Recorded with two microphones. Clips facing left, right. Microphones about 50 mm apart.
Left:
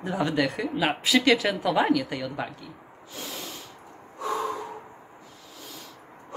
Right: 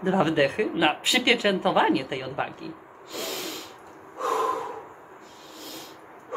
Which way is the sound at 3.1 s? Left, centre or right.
Right.